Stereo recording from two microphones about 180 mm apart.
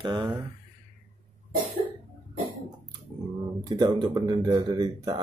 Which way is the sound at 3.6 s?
25° right (ahead or behind).